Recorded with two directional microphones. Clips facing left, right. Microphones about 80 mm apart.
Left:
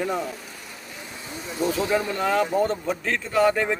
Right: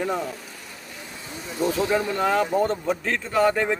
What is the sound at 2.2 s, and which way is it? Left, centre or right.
Speech, right.